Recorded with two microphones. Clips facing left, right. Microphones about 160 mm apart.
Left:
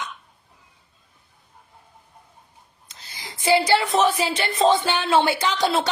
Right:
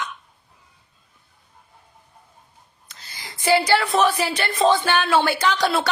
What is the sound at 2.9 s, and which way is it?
A woman's voice, 20° left (ahead or behind).